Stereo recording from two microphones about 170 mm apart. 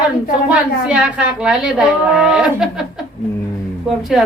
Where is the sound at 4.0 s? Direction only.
Centre (ahead or behind).